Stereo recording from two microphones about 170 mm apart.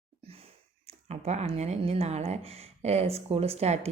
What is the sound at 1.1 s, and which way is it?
Speech, 40° right (ahead or behind).